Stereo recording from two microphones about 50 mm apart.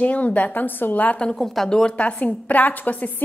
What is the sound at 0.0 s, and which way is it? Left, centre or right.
A woman's voice, left.